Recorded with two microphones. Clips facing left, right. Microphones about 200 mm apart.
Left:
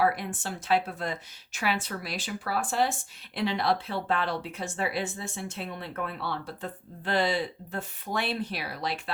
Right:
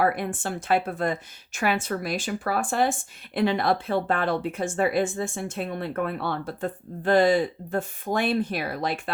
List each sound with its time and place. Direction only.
0.0 s speech: 55° right (ahead or behind)